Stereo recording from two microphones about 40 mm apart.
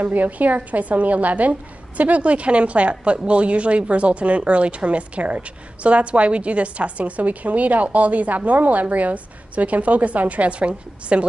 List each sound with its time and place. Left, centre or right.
0.0 s a woman's voice: right